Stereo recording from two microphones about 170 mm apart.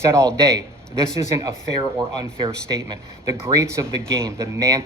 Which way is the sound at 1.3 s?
20° right (ahead or behind).